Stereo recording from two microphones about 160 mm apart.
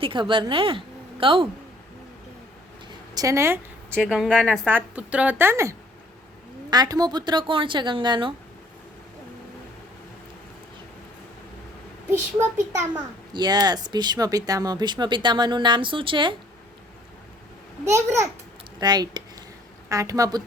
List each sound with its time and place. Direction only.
0.0 s a woman's voice: 30° right (ahead or behind)
3.2 s a woman's voice: 20° right (ahead or behind)
3.9 s a woman's voice: centre (ahead or behind)
4.7 s a woman's voice: 10° right (ahead or behind); by 8.3 s 30° right (ahead or behind)
13.3 s speech: 25° right (ahead or behind)
17.8 s a woman's voice: 15° right (ahead or behind)